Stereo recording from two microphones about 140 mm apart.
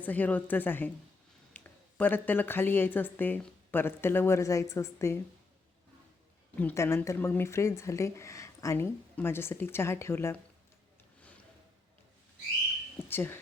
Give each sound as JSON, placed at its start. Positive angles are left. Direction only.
{"t": 0.0, "sound": "speech", "side_deg": 10}
{"t": 6.6, "sound": "speech", "side_deg": 15}
{"t": 13.1, "sound": "speech", "side_deg": 15}